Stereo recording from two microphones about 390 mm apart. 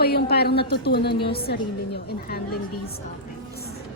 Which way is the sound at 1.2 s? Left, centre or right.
Centre.